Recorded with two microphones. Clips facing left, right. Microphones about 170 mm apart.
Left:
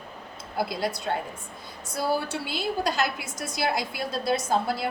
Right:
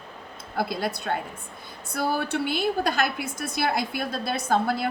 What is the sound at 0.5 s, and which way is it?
A woman's voice, 55° right (ahead or behind).